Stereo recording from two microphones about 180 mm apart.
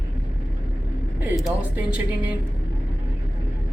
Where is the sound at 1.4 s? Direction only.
5° right (ahead or behind).